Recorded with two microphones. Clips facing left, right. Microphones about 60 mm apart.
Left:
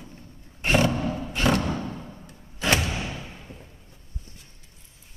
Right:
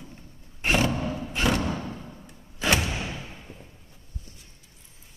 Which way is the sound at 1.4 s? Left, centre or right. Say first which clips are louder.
Left 2 dB; centre.